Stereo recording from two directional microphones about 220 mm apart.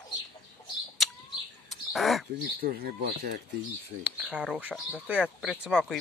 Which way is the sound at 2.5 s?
45° right (ahead or behind).